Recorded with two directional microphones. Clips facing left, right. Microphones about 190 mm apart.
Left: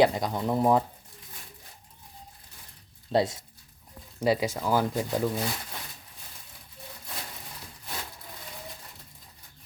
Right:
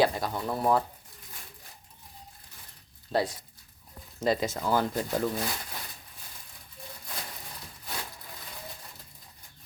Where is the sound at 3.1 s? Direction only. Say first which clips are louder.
Left 3 dB; 25° left (ahead or behind).